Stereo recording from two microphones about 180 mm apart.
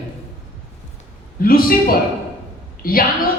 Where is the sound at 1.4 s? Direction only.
55° left (ahead or behind).